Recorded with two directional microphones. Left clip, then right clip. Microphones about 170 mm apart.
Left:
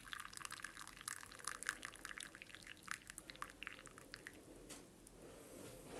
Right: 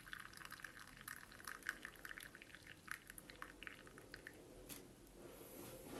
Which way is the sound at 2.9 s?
30° left (ahead or behind).